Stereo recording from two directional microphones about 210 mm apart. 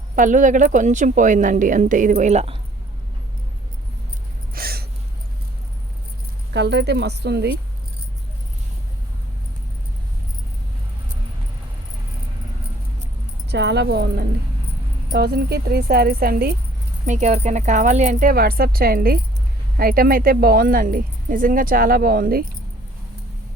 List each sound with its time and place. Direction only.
0.2 s speech: 40° right (ahead or behind)
4.5 s gasp: 45° right (ahead or behind)
6.5 s speech: 55° right (ahead or behind)
13.5 s speech: 55° right (ahead or behind)
17.1 s speech: 35° right (ahead or behind)